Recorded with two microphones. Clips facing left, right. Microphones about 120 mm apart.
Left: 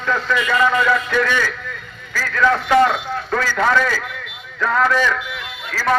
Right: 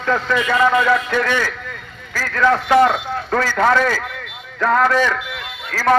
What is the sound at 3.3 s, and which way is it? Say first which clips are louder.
A man's voice: right 2 dB; 35° right (ahead or behind).